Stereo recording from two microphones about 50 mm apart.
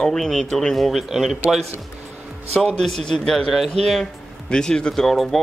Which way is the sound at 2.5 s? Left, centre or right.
Centre.